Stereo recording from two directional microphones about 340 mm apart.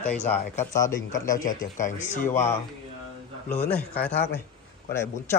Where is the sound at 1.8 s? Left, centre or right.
Left.